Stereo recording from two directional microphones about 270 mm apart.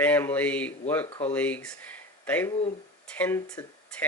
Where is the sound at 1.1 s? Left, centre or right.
Left.